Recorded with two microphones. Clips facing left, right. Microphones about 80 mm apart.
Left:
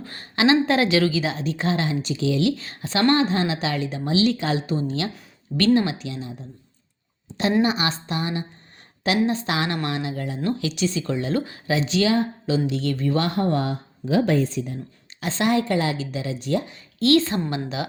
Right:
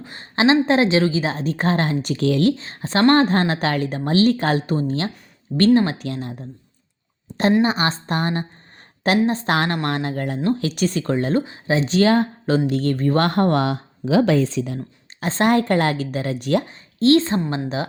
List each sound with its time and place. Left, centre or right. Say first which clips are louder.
0.0 s a sound: right 1 dB; right
0.3 s a woman's voice: right 2 dB; right
2.5 s a woman's voice: right 4 dB; right
7.6 s a woman's voice: right 2 dB; right
10.4 s speech: right 3 dB; right
11.3 s speech: right 3 dB; right
11.8 s speech: right 4 dB; right
15.2 s speech: right 4 dB; right
16.6 s a woman's voice: right 4 dB; right